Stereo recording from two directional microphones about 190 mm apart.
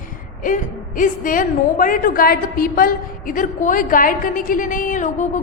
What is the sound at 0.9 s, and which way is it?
A woman's voice, 45° left (ahead or behind).